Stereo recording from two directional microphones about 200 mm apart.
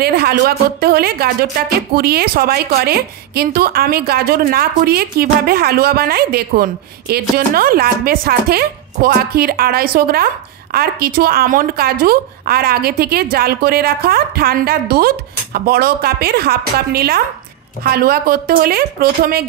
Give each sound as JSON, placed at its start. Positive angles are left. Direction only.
{"t": 0.0, "sound": "a woman's voice", "side_deg": -50}